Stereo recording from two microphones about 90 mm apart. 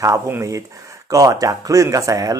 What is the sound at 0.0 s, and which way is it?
A man's voice, 35° right (ahead or behind).